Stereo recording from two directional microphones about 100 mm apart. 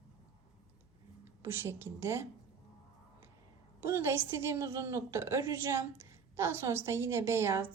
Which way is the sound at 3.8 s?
25° right (ahead or behind).